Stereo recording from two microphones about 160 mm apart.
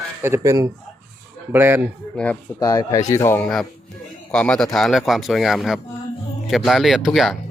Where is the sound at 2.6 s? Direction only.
20° left (ahead or behind); by 7.3 s centre (ahead or behind).